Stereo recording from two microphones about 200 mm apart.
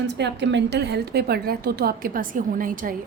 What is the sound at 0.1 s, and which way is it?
A woman's voice, 60° right (ahead or behind).